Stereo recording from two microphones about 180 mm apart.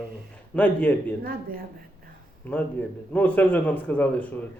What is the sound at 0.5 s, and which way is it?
Speech, 10° left (ahead or behind).